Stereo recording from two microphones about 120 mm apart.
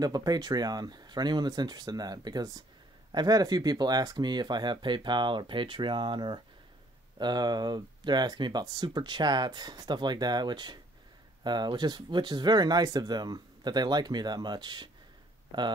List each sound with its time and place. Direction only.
0.0 s speech: 35° right (ahead or behind)